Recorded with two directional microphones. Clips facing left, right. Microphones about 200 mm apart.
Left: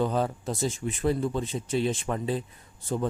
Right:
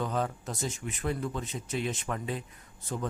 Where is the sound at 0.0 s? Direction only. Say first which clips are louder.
Left 5 dB; 30° left (ahead or behind).